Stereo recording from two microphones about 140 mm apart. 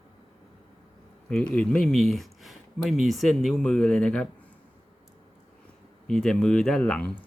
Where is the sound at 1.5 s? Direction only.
5° left (ahead or behind).